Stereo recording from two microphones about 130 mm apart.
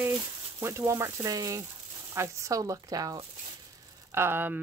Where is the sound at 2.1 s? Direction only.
20° right (ahead or behind).